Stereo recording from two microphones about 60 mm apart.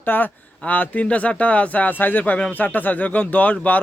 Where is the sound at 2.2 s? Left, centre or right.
Left.